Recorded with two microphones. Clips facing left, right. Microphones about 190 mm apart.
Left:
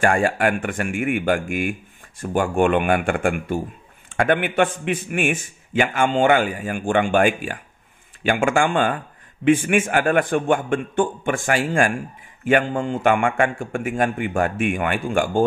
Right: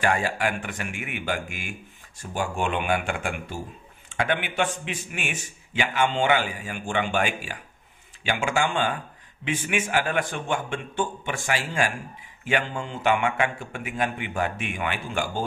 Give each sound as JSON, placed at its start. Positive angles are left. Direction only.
{"t": 0.0, "sound": "a man's voice", "side_deg": 50}